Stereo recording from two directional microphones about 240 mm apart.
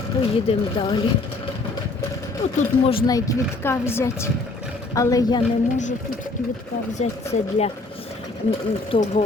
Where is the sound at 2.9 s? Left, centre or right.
Centre.